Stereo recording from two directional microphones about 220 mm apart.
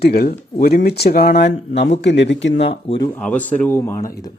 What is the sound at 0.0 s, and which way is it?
Speech, 45° left (ahead or behind).